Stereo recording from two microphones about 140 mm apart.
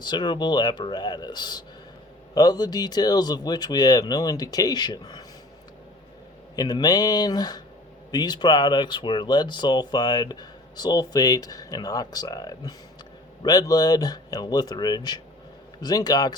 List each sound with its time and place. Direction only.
0.0 s speech: 30° left (ahead or behind)
6.6 s speech: 30° left (ahead or behind)